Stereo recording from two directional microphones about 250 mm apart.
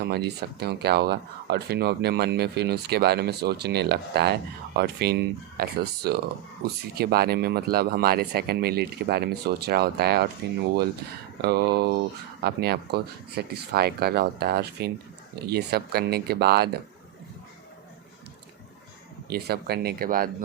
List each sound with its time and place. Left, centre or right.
0.0 s speech: right
11.4 s speech: right
19.3 s speech: right